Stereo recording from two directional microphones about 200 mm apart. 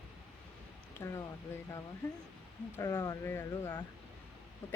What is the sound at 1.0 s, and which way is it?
Speech, 10° left (ahead or behind).